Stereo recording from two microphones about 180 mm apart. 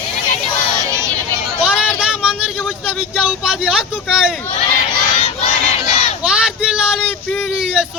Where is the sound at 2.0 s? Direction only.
5° right (ahead or behind).